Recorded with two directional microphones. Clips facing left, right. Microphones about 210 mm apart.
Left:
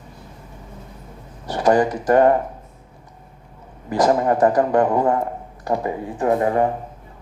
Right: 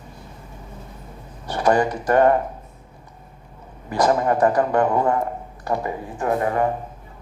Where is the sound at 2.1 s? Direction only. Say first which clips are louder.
Left 2 dB; 30° left (ahead or behind).